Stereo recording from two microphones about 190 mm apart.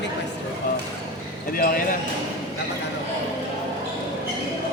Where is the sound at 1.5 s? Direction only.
50° left (ahead or behind).